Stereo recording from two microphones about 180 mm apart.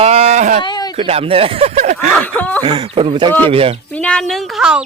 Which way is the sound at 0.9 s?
30° right (ahead or behind).